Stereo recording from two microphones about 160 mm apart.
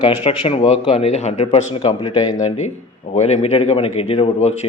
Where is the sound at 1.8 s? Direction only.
30° left (ahead or behind).